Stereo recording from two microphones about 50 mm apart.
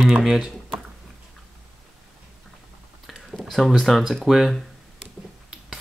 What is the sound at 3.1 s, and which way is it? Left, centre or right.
Speech, centre.